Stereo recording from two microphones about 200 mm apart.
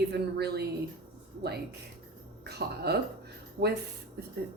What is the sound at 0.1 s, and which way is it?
Speech, 55° right (ahead or behind).